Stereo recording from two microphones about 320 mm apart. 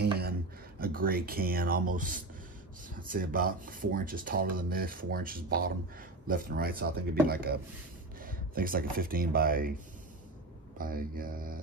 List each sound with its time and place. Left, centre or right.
0.0 s speech: right
10.8 s speech: right